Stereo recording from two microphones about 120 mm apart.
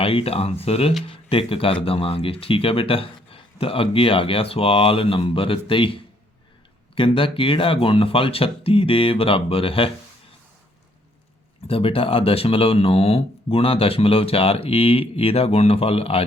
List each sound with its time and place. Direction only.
0.0 s speech: 50° left (ahead or behind)
11.7 s speech: 50° left (ahead or behind)